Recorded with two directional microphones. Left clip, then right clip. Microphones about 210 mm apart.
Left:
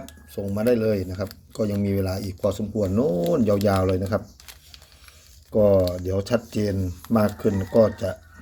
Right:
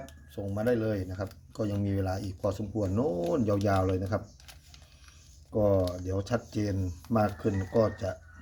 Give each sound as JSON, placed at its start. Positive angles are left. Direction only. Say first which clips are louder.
{"t": 0.5, "sound": "speech", "louder": "left 8 dB", "side_deg": 20}
{"t": 5.6, "sound": "speech", "louder": "left 8 dB", "side_deg": 25}